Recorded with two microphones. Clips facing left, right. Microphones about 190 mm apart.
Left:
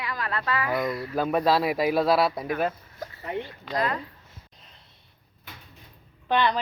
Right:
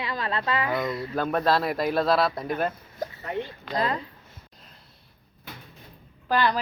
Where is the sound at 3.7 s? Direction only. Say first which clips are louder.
Even; 30° right (ahead or behind).